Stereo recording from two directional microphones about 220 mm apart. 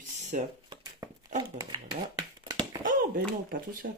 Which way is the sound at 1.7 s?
20° right (ahead or behind).